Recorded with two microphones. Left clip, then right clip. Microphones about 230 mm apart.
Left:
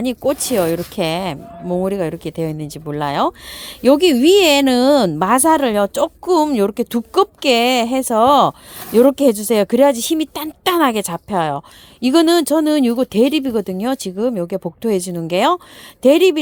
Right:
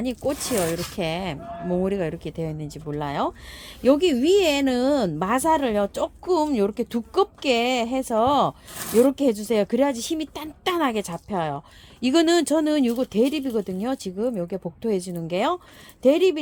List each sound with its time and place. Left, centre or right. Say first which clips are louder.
0.0 s speech: left 8 dB; left
1.7 s speech: left 6 dB; left